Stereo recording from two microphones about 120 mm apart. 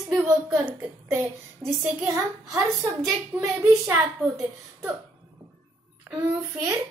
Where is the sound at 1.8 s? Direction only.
20° right (ahead or behind).